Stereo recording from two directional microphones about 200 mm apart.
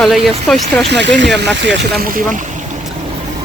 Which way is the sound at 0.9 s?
60° right (ahead or behind).